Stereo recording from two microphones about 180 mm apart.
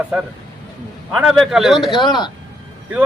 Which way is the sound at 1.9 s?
25° left (ahead or behind).